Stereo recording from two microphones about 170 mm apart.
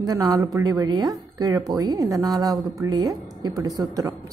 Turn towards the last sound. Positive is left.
turn(degrees=-20)  # may be behind; listen again after turning